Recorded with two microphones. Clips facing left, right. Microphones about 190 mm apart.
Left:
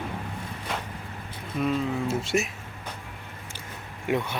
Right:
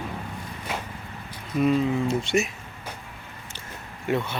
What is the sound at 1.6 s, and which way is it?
Speech, 5° left (ahead or behind).